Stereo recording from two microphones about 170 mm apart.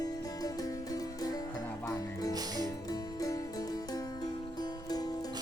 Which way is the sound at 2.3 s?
20° right (ahead or behind).